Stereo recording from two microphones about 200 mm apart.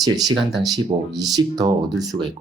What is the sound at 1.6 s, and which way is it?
Speech, 20° right (ahead or behind).